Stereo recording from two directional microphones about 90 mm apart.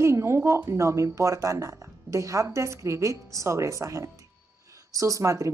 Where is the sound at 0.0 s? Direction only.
30° right (ahead or behind).